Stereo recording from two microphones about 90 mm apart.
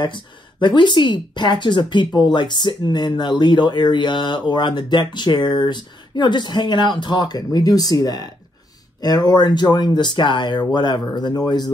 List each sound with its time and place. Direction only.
0.0 s a woman's voice: 60° left (ahead or behind)